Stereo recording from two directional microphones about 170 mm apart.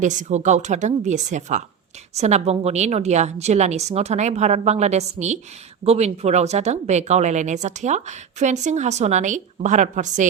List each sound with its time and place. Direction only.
0.0 s a woman's voice: 45° right (ahead or behind)